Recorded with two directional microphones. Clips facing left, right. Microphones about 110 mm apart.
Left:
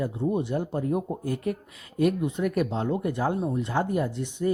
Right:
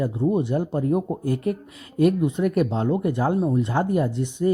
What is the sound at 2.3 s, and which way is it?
Speech, 30° right (ahead or behind).